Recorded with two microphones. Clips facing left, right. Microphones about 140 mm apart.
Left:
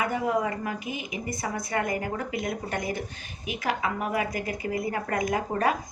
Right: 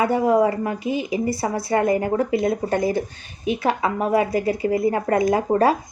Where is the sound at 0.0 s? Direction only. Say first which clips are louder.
Right 9 dB; 30° right (ahead or behind).